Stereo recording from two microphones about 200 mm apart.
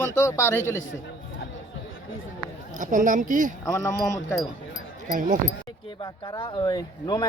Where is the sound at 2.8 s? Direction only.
40° right (ahead or behind).